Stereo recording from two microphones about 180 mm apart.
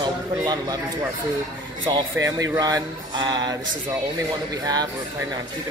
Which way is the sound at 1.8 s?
25° right (ahead or behind).